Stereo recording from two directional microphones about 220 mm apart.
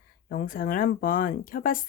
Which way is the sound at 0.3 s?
40° left (ahead or behind).